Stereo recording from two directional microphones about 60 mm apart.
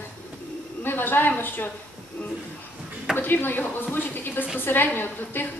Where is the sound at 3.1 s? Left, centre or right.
Left.